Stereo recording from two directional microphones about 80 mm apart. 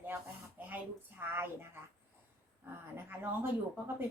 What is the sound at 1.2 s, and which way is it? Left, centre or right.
Speech, right.